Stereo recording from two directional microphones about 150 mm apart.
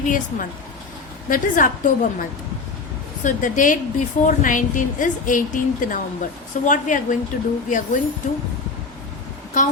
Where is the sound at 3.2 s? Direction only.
60° left (ahead or behind).